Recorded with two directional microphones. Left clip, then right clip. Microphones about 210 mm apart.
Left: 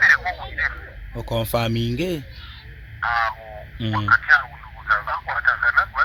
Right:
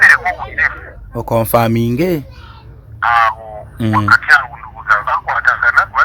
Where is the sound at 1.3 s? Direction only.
30° right (ahead or behind).